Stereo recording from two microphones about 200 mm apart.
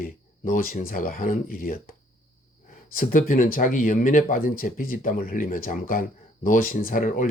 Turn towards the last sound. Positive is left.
turn(degrees=40)  # may be behind; listen again after turning